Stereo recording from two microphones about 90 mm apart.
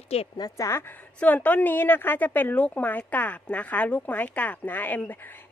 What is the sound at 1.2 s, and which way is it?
A woman's voice, 20° left (ahead or behind).